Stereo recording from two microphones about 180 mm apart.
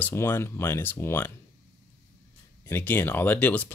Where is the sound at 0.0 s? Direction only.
15° left (ahead or behind).